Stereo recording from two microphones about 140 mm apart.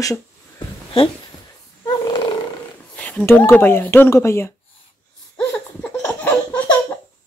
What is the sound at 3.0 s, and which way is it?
Speech, 10° left (ahead or behind).